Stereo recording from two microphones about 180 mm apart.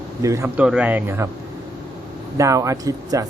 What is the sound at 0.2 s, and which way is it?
Speech, 20° right (ahead or behind).